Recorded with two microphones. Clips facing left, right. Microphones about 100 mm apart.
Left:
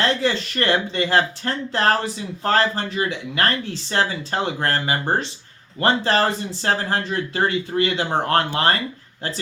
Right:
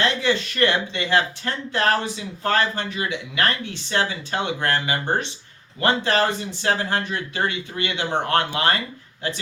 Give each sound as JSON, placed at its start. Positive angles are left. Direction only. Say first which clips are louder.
{"t": 0.0, "sound": "speech", "louder": "left 1 dB", "side_deg": 35}